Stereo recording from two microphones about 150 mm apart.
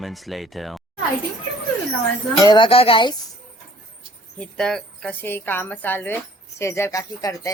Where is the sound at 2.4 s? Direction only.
30° left (ahead or behind).